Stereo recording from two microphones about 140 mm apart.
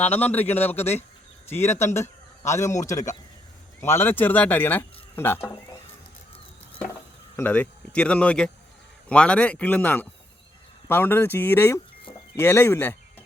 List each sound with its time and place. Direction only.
0.0 s speech: 10° left (ahead or behind)
7.3 s speech: 15° left (ahead or behind)